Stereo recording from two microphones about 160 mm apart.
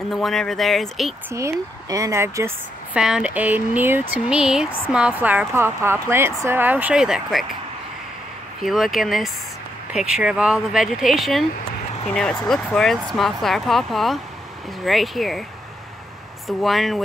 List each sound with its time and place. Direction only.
0.1 s speech: centre (ahead or behind)
1.3 s a woman's voice: 20° right (ahead or behind); by 7.4 s centre (ahead or behind)
8.6 s speech: centre (ahead or behind)
16.4 s speech: centre (ahead or behind)